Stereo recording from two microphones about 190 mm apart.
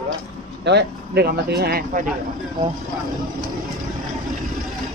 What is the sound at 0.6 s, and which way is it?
Speech, 60° right (ahead or behind).